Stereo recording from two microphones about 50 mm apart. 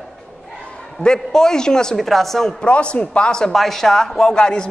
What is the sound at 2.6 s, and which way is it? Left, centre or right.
Speech, left.